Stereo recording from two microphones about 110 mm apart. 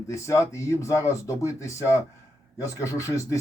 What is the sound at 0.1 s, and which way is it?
Speech, 30° left (ahead or behind).